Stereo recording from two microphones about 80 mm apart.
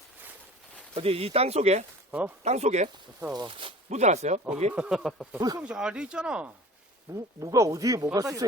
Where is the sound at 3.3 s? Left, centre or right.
Right.